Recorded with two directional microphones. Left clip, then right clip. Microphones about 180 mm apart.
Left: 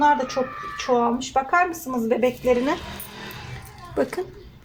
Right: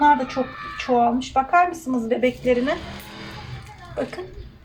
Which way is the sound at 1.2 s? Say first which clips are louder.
Right 2 dB; 40° left (ahead or behind).